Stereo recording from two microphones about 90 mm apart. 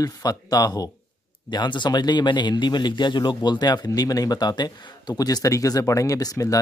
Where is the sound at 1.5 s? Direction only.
55° left (ahead or behind).